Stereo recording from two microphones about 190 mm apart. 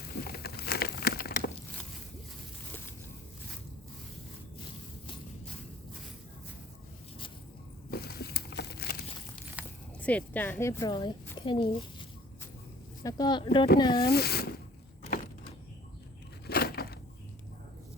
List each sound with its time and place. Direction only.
0.0 s crumpling: 55° left (ahead or behind)
7.9 s a sound: 55° left (ahead or behind)
9.6 s keys jangling: 5° right (ahead or behind)
10.0 s a woman's voice: 5° left (ahead or behind); by 11.7 s 25° left (ahead or behind)
13.0 s speech: 20° left (ahead or behind)
14.0 s speech: 55° left (ahead or behind)
16.5 s a sound: 55° left (ahead or behind)